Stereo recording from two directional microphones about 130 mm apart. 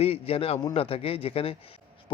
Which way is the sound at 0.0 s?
50° left (ahead or behind).